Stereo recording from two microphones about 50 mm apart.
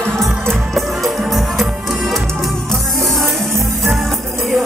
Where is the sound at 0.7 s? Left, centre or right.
Centre.